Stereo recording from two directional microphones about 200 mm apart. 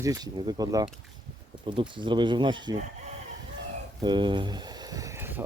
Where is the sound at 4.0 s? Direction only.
20° right (ahead or behind).